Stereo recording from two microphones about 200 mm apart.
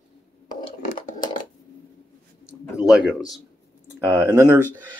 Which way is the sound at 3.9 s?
10° right (ahead or behind).